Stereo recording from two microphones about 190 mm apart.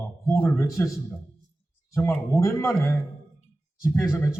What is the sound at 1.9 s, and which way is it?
Speech, 15° left (ahead or behind).